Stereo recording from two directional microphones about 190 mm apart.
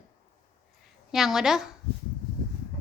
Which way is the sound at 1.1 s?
Centre (ahead or behind).